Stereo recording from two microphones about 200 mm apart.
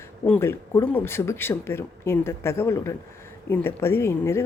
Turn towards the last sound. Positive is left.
turn(degrees=15)  # may be behind; listen again after turning